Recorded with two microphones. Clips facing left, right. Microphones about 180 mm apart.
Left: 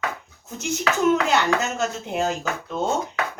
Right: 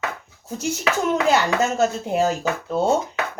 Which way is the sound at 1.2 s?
40° right (ahead or behind).